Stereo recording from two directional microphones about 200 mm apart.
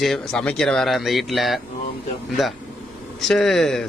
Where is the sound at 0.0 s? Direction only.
Centre (ahead or behind).